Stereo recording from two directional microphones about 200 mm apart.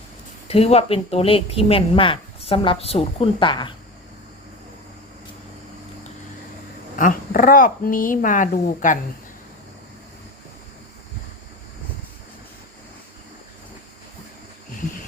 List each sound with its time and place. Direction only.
0.4 s speech: 30° left (ahead or behind)
7.0 s speech: 45° left (ahead or behind)